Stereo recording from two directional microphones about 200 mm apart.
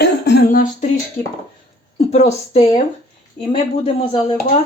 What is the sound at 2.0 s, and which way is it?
Speech, 30° left (ahead or behind).